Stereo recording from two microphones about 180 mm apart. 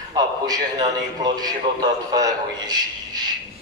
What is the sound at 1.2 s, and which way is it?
A man's voice, 20° right (ahead or behind).